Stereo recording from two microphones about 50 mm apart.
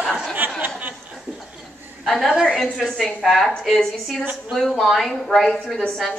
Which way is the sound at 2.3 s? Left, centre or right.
Centre.